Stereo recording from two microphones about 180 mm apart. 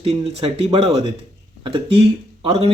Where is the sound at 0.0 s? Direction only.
30° right (ahead or behind).